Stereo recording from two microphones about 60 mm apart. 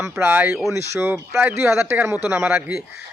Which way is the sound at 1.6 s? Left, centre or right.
Right.